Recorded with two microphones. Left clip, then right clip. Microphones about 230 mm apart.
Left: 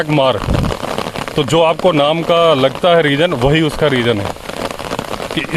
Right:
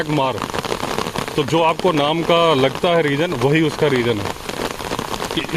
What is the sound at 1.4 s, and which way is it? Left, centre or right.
Speech, left.